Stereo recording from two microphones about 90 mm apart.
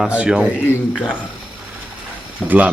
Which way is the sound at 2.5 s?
15° right (ahead or behind).